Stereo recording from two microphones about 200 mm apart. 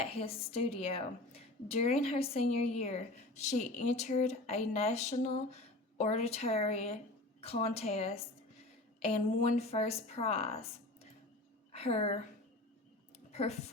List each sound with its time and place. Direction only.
0.0 s a woman's voice: 30° left (ahead or behind)
13.3 s a woman's voice: 30° left (ahead or behind)